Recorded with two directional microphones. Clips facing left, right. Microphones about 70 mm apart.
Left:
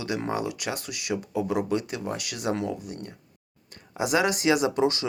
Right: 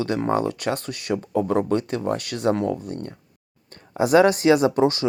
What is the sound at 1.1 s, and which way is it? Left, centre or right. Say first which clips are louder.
Speech: right 5 dB; right.